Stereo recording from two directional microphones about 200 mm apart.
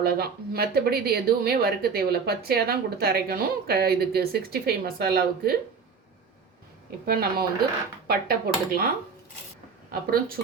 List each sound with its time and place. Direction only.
0.0 s speech: 50° right (ahead or behind)
7.0 s speech: 50° right (ahead or behind)
9.9 s speech: 45° right (ahead or behind)